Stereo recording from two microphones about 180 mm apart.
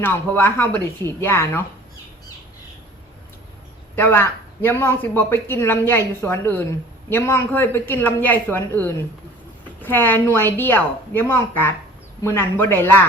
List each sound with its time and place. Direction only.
0.0 s speech: 10° left (ahead or behind)
3.9 s speech: 10° left (ahead or behind)